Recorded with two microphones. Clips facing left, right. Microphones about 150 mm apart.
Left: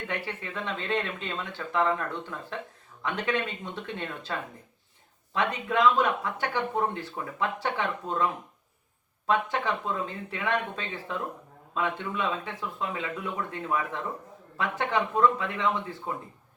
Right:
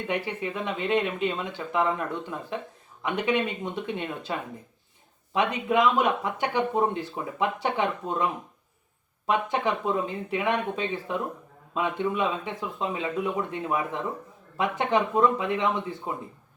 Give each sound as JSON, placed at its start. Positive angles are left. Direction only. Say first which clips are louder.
{"t": 0.1, "sound": "speech", "louder": "right 5 dB", "side_deg": -15}